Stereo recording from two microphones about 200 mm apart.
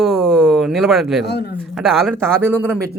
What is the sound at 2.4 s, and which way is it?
Speech, 10° right (ahead or behind).